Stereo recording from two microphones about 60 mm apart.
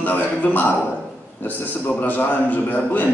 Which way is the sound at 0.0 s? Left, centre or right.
Left.